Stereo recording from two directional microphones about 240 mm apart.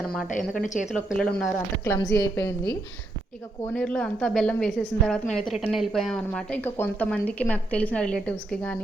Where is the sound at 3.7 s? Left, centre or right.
Centre.